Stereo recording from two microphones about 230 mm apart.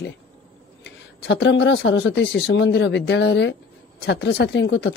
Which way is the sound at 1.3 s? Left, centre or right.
Left.